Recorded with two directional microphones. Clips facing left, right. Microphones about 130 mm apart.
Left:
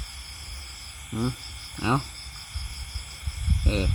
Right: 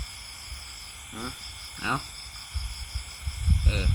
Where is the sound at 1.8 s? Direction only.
30° left (ahead or behind).